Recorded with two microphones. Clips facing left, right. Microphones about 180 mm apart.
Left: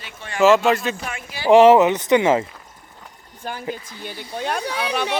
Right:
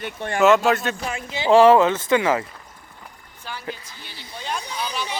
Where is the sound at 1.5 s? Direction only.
20° left (ahead or behind).